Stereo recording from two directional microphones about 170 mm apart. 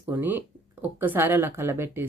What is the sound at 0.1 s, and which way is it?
Speech, 10° right (ahead or behind).